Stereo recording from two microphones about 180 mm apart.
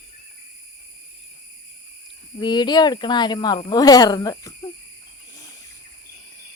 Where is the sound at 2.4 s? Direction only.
25° left (ahead or behind).